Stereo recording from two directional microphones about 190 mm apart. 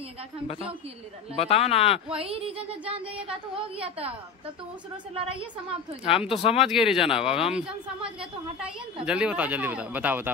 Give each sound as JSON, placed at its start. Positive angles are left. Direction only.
{"t": 1.3, "sound": "speech", "side_deg": 30}
{"t": 2.0, "sound": "a woman's voice", "side_deg": -30}
{"t": 5.1, "sound": "a woman's voice", "side_deg": -30}
{"t": 6.0, "sound": "speech", "side_deg": 30}
{"t": 6.6, "sound": "speech", "side_deg": -5}
{"t": 7.2, "sound": "speech", "side_deg": 30}
{"t": 7.5, "sound": "speech", "side_deg": -5}